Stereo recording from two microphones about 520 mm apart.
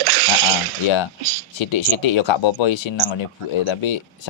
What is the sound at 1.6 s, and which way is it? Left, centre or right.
Speech, left.